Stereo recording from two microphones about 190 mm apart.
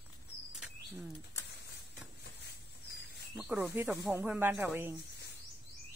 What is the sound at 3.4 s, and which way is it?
Speech, 5° right (ahead or behind).